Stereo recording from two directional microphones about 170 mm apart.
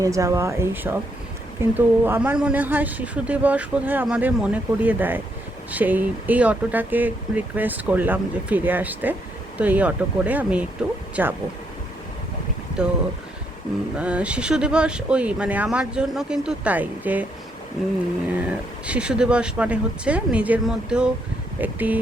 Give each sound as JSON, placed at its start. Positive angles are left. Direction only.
{"t": 0.0, "sound": "speech", "side_deg": -20}
{"t": 12.8, "sound": "speech", "side_deg": -5}